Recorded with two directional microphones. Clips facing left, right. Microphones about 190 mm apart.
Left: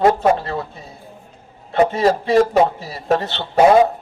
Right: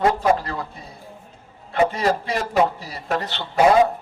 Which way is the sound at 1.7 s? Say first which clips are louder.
Left 4 dB; 40° left (ahead or behind).